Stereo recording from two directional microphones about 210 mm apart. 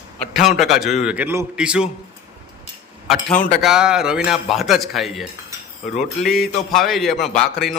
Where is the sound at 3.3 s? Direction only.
40° left (ahead or behind).